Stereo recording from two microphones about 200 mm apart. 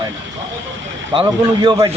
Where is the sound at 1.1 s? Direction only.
25° right (ahead or behind).